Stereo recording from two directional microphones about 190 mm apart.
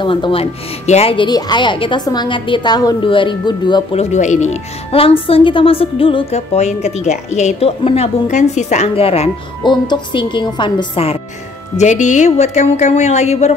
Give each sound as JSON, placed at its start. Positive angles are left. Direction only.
{"t": 0.0, "sound": "speech", "side_deg": 25}
{"t": 11.7, "sound": "speech", "side_deg": 40}